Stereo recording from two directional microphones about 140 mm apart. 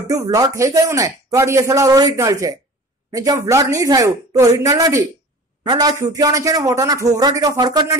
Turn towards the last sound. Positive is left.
turn(degrees=-30)  # may be behind; listen again after turning